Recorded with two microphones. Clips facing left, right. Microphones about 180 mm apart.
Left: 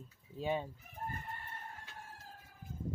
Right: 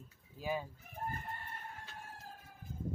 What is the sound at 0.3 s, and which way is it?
Speech, 25° left (ahead or behind).